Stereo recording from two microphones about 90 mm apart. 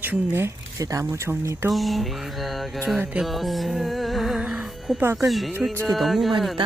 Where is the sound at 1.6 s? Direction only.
Centre (ahead or behind).